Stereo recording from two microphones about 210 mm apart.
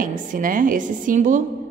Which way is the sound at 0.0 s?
40° right (ahead or behind).